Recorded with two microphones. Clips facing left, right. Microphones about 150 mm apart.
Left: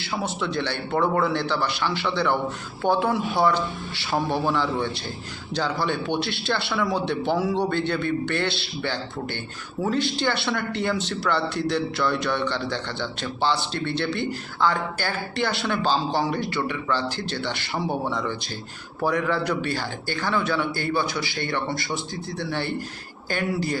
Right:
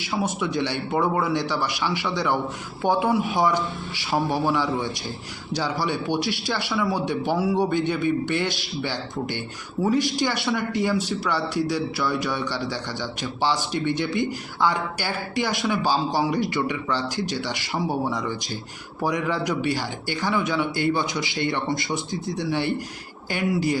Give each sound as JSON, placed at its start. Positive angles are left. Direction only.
{"t": 0.0, "sound": "a man's voice", "side_deg": -15}